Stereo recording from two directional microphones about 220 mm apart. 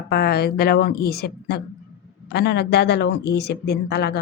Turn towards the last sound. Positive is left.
turn(degrees=45)  # may be behind; listen again after turning